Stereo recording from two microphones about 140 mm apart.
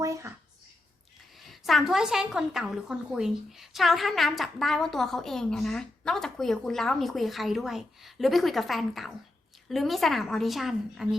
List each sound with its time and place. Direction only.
0.0 s speech: 20° right (ahead or behind)
1.5 s a woman's voice: centre (ahead or behind)